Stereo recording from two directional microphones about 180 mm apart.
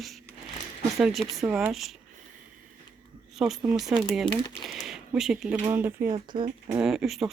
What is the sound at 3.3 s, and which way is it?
Speech, centre (ahead or behind).